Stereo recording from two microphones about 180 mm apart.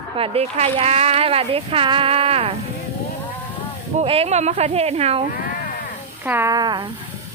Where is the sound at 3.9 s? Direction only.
35° right (ahead or behind).